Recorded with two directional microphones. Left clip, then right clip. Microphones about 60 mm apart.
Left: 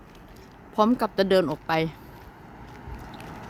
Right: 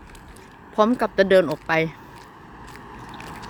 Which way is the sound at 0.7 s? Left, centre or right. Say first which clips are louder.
Right 4 dB; centre.